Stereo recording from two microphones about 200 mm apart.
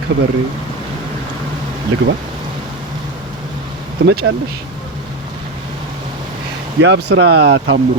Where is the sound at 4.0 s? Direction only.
50° right (ahead or behind).